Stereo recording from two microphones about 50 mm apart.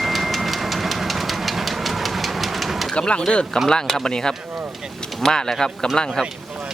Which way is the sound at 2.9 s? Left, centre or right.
Left.